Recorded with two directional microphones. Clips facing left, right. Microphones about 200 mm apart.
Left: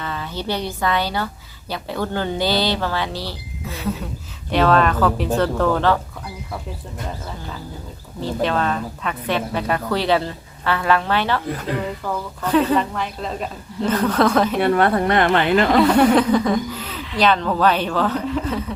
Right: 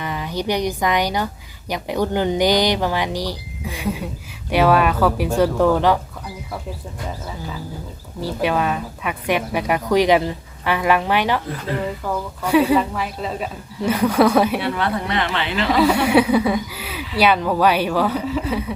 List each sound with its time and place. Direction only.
0.0 s a woman's voice: 15° right (ahead or behind)
8.2 s speech: 10° right (ahead or behind)
14.6 s a woman's voice: 50° left (ahead or behind)
15.7 s speech: 5° right (ahead or behind)